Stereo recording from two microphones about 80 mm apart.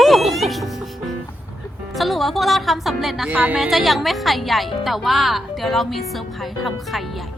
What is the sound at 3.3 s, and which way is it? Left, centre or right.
Speech, centre.